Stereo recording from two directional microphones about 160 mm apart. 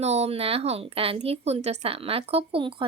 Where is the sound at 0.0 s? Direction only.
40° right (ahead or behind).